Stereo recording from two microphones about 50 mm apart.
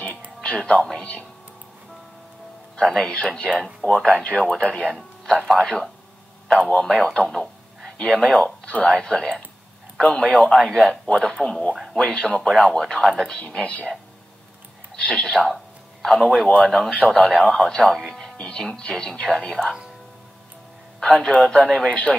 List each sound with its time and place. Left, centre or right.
0.6 s a man's voice: left
2.7 s a man's voice: centre
6.9 s speech: centre
8.5 s a man's voice: left
15.0 s speech: centre
15.3 s a man's voice: centre
21.0 s speech: centre